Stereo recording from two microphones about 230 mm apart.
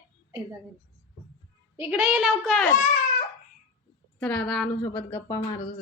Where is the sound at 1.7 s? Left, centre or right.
Centre.